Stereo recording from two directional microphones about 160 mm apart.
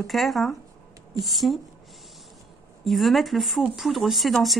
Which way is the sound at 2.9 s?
Centre (ahead or behind).